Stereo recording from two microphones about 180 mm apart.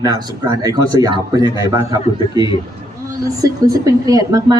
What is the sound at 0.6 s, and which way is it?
A woman's voice, 20° right (ahead or behind).